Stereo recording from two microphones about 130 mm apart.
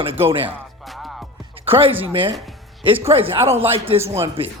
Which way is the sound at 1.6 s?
45° right (ahead or behind).